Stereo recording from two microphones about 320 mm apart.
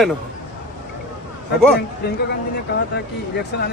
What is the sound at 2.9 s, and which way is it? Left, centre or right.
Speech, left.